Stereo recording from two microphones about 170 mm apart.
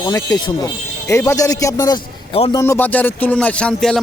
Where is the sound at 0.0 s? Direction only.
20° left (ahead or behind).